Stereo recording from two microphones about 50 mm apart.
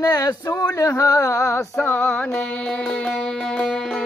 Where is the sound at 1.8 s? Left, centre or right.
Left.